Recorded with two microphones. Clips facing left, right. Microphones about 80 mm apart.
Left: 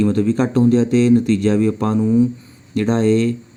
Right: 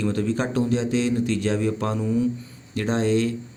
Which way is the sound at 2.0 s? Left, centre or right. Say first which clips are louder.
Left 9 dB; left.